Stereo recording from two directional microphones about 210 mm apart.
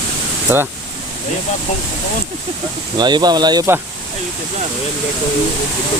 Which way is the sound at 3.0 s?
20° right (ahead or behind).